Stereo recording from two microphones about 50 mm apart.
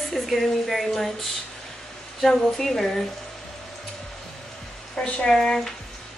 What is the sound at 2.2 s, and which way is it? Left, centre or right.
Speech, centre.